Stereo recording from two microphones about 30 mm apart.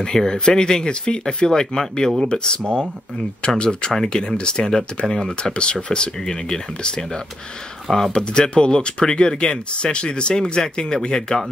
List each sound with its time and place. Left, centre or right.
0.0 s speech: left
2.2 s speech: left
4.1 s speech: left
5.4 s speech: left
5.9 s speech: left
8.1 s speech: left